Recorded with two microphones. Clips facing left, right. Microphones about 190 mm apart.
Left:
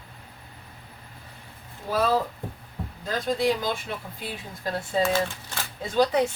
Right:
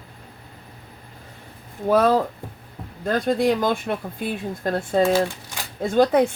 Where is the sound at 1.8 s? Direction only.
55° right (ahead or behind).